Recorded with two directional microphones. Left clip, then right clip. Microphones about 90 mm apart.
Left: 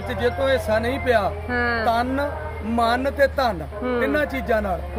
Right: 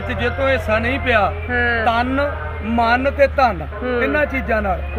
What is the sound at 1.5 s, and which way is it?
Speech, 40° left (ahead or behind).